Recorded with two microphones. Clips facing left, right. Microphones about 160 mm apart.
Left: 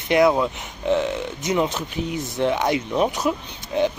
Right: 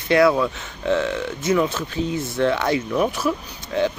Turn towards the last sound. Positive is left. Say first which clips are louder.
# even
turn(degrees=20)  # may be behind; listen again after turning